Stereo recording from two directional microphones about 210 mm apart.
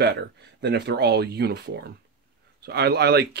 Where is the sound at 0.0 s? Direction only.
50° right (ahead or behind).